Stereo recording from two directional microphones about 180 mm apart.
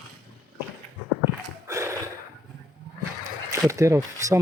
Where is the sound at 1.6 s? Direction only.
15° right (ahead or behind).